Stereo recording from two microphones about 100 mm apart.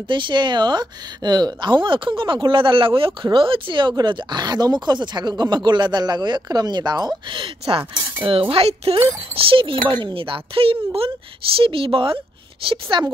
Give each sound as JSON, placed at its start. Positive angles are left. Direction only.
{"t": 0.1, "sound": "speech", "side_deg": -55}
{"t": 12.9, "sound": "speech", "side_deg": -50}